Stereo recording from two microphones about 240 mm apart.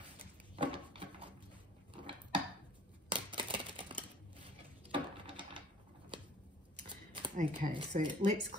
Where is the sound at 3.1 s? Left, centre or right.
Right.